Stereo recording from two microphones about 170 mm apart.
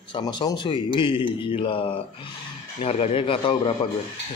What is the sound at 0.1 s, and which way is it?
A man's voice, 25° left (ahead or behind).